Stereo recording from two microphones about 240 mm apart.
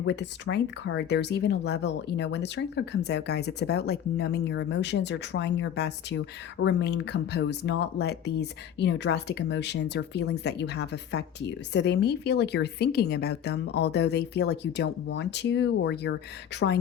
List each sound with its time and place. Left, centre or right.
0.0 s speech: left